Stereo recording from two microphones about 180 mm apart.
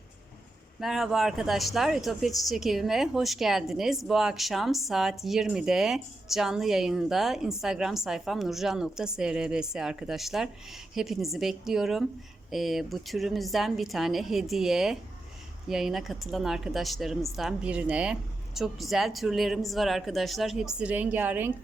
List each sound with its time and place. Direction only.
0.8 s a woman's voice: centre (ahead or behind)